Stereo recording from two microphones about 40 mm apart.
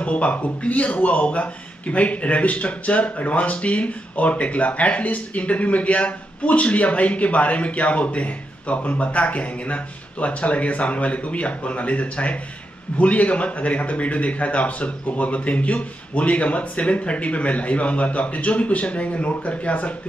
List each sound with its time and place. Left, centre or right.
0.0 s speech: left